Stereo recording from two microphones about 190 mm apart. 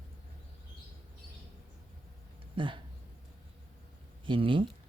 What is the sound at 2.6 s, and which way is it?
Speech, 25° right (ahead or behind).